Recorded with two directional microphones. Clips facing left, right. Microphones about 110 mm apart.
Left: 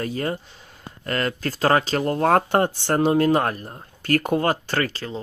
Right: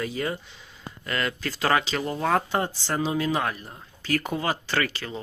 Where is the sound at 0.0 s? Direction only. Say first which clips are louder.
Left 3 dB; 40° left (ahead or behind).